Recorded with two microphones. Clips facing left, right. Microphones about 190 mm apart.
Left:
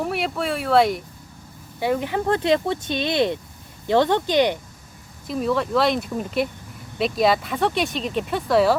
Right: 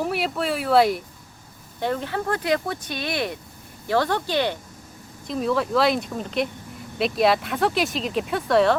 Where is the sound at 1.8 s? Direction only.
15° left (ahead or behind).